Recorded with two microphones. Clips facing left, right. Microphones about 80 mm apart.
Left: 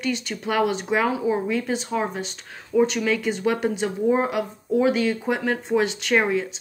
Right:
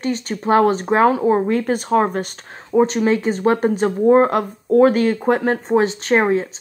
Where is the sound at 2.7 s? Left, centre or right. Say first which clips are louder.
Right 5 dB; right.